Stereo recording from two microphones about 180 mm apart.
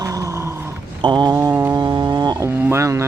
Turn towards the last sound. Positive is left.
turn(degrees=-15)  # may be behind; listen again after turning